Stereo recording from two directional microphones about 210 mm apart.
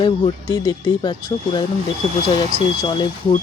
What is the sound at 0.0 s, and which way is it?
Speech, 20° left (ahead or behind).